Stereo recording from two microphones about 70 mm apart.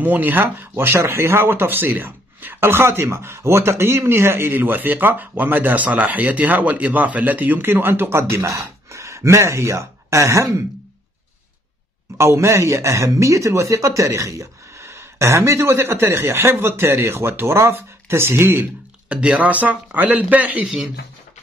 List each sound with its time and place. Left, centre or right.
0.0 s speech: right
12.2 s speech: right
19.0 s a man's voice: centre
20.6 s speech: centre